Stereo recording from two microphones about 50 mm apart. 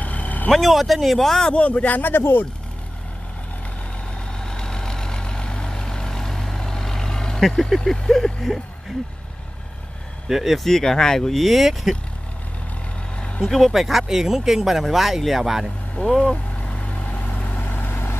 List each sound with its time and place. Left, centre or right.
0.0 s vehicle: left
0.5 s speech: centre
1.5 s speech: left
2.0 s speech: left
4.4 s vehicle: centre
7.8 s speech: centre
10.2 s speech: centre
10.7 s speech: centre
13.2 s vehicle: centre
13.5 s speech: centre
16.1 s speech: centre
16.6 s vehicle: left
17.6 s vehicle: left